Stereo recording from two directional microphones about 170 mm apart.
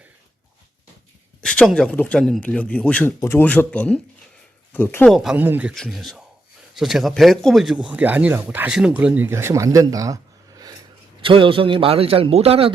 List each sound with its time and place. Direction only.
1.4 s speech: 5° left (ahead or behind)
5.1 s speech: 5° right (ahead or behind)
5.7 s speech: centre (ahead or behind); by 10.2 s 20° right (ahead or behind)
11.2 s a man's voice: 30° right (ahead or behind)